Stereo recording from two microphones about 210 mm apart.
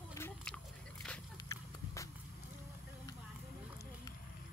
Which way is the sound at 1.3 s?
15° left (ahead or behind).